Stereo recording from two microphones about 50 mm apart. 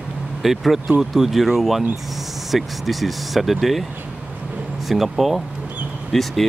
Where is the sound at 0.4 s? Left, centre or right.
Centre.